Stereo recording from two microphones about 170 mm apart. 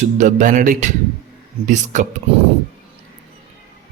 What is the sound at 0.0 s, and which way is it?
A man's voice, 45° right (ahead or behind).